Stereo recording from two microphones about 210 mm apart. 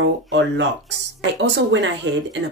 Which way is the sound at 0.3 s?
55° right (ahead or behind).